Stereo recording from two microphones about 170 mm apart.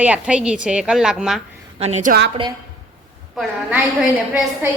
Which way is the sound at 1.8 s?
40° right (ahead or behind).